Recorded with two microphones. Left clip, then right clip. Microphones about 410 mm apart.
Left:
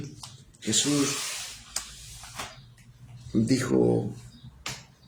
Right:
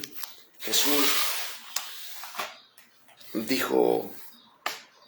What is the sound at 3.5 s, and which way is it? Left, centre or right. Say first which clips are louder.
Speech: right 2 dB; centre.